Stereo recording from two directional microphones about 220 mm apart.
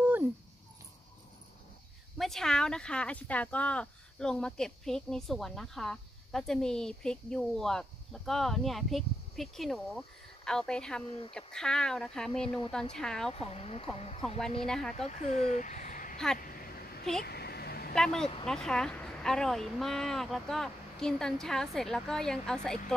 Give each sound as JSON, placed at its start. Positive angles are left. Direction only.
{"t": 0.0, "sound": "a sound", "side_deg": -10}
{"t": 2.1, "sound": "speech", "side_deg": 0}
{"t": 11.1, "sound": "speech", "side_deg": 25}
{"t": 11.3, "sound": "speech", "side_deg": 5}
{"t": 13.3, "sound": "speech", "side_deg": 25}
{"t": 14.7, "sound": "speech", "side_deg": 0}
{"t": 15.0, "sound": "speech", "side_deg": 30}
{"t": 17.2, "sound": "vehicle", "side_deg": 45}
{"t": 17.9, "sound": "speech", "side_deg": 5}